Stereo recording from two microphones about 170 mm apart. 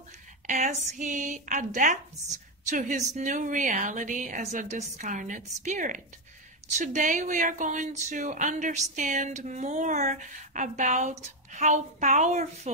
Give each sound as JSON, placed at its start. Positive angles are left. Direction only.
{"t": 0.5, "sound": "speech", "side_deg": -45}